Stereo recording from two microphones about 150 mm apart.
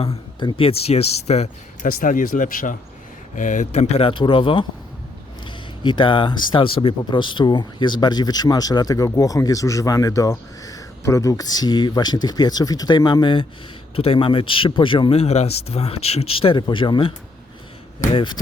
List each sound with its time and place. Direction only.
0.0 s speech: 35° left (ahead or behind)
1.9 s speech: 60° left (ahead or behind); by 17.1 s 35° left (ahead or behind)
18.1 s speech: 35° left (ahead or behind)